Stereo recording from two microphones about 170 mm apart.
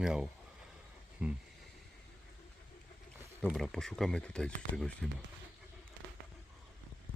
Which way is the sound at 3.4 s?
Centre (ahead or behind).